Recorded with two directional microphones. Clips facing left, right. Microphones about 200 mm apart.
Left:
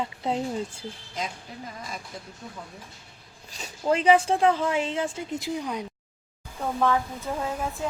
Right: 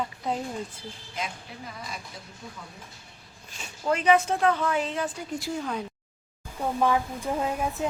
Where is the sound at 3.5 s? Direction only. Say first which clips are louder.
Left 3 dB; 35° left (ahead or behind); by 5.8 s 15° left (ahead or behind).